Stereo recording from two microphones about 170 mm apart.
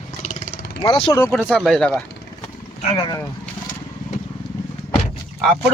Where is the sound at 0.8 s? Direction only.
35° left (ahead or behind).